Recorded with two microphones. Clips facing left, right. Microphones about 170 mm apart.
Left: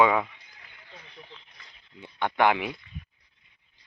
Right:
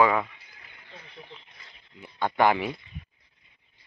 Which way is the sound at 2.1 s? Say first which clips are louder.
Right 1 dB; 10° right (ahead or behind).